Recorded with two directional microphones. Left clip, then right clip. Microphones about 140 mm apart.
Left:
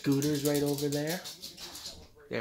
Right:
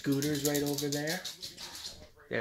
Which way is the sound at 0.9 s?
15° left (ahead or behind).